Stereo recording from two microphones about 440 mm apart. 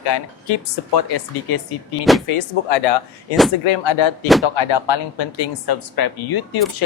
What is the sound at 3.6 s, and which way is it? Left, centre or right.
Speech, left.